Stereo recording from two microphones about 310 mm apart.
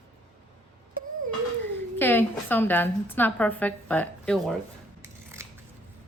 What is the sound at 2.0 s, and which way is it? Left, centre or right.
A woman's voice, centre.